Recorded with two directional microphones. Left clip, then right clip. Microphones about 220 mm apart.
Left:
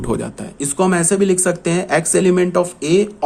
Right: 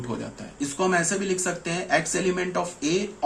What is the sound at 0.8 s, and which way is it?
A man's voice, 50° left (ahead or behind).